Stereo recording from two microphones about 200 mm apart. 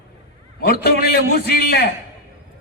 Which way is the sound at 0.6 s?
50° left (ahead or behind).